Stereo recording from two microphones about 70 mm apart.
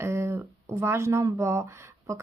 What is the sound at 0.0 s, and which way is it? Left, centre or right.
Speech, right.